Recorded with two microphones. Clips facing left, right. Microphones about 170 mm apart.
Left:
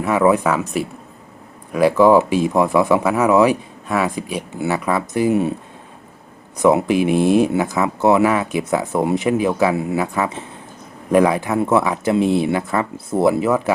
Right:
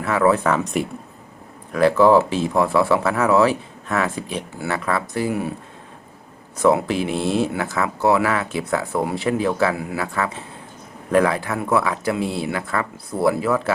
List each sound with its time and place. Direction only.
0.0 s speech: 15° left (ahead or behind)
1.7 s speech: 15° left (ahead or behind)
6.6 s speech: 15° left (ahead or behind)
9.7 s speech: 25° left (ahead or behind)